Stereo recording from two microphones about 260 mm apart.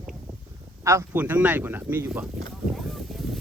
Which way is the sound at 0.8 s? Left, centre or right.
Centre.